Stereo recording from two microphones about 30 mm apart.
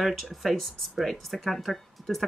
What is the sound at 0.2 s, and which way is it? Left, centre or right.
Speech, centre.